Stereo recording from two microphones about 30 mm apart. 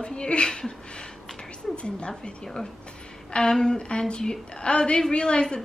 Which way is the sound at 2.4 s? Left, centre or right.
Centre.